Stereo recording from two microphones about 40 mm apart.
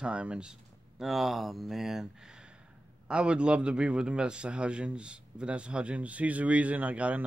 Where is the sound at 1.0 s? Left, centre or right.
Centre.